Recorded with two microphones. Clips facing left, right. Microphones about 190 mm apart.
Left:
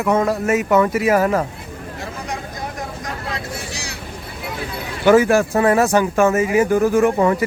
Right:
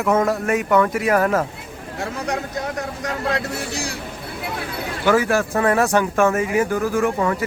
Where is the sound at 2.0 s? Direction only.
70° right (ahead or behind).